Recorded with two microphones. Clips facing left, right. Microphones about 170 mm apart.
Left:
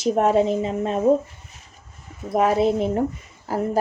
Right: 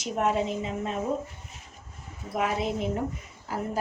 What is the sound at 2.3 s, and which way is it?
Speech, 35° left (ahead or behind).